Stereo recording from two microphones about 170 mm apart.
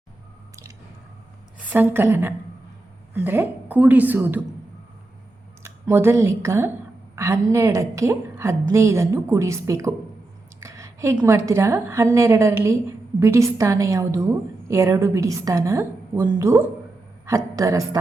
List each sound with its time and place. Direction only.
1.5 s a woman's voice: 10° right (ahead or behind)
5.6 s a woman's voice: 15° right (ahead or behind)